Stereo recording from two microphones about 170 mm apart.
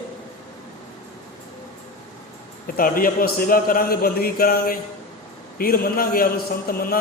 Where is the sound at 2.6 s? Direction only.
55° left (ahead or behind).